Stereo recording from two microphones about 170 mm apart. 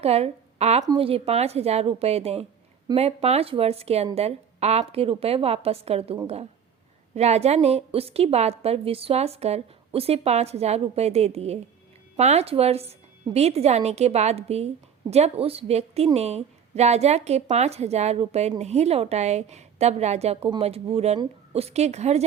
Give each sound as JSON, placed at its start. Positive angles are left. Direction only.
{"t": 0.0, "sound": "a woman's voice", "side_deg": -35}